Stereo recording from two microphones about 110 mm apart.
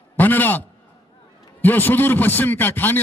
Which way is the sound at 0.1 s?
15° left (ahead or behind).